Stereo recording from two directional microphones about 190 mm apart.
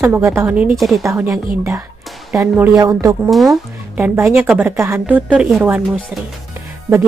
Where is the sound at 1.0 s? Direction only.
15° right (ahead or behind).